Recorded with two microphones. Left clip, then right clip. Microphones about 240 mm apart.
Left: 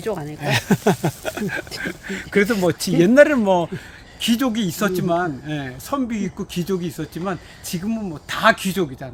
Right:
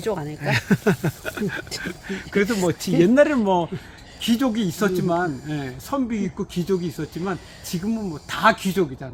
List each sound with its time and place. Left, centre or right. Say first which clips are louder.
0.0 s speech: left 1 dB; centre
0.5 s speech: left 3 dB; left